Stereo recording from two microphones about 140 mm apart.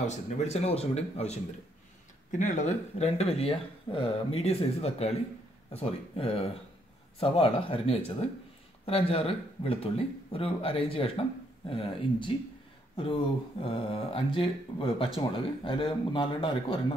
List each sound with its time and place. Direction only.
0.0 s speech: 55° left (ahead or behind)
2.3 s speech: 60° left (ahead or behind); by 16.8 s 35° left (ahead or behind)